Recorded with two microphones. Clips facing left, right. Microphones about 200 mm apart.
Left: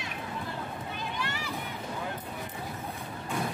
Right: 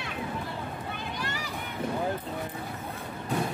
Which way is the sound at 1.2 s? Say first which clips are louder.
Right 1 dB; 40° right (ahead or behind).